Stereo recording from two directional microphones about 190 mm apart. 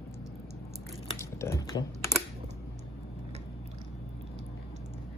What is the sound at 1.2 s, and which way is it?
Typing, 15° left (ahead or behind).